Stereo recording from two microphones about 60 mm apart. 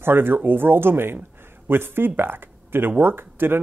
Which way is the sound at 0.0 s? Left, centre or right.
Right.